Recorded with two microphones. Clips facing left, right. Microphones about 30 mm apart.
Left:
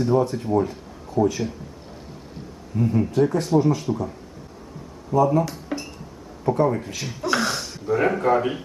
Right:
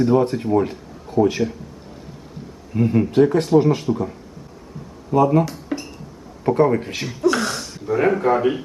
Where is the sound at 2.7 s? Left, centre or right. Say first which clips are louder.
Right 4 dB; right.